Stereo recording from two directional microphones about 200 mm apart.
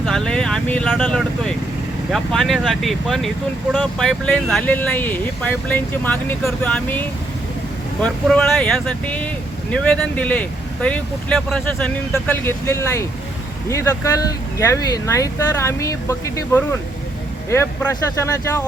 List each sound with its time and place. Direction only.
0.0 s speech: centre (ahead or behind)
8.0 s speech: 5° left (ahead or behind)